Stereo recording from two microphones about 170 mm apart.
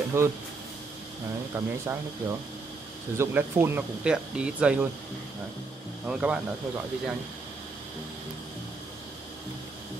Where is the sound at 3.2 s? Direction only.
10° right (ahead or behind).